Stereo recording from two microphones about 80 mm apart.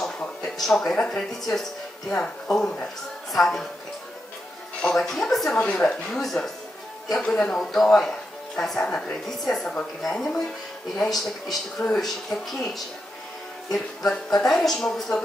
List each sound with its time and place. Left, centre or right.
0.4 s speech: centre
4.8 s speech: centre